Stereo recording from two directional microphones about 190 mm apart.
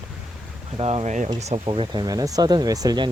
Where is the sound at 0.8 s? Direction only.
35° right (ahead or behind).